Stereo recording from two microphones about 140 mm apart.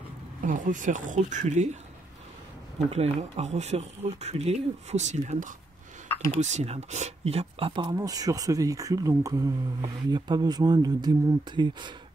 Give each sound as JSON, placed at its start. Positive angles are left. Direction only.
{"t": 0.4, "sound": "speech", "side_deg": -70}
{"t": 2.9, "sound": "speech", "side_deg": -50}